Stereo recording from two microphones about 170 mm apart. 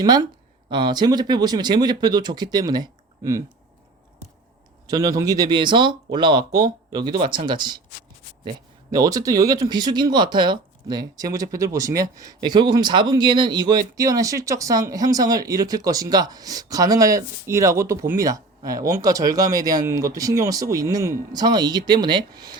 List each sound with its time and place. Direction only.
0.0 s speech: 25° right (ahead or behind)
4.9 s speech: 20° right (ahead or behind)
8.9 s speech: 20° right (ahead or behind)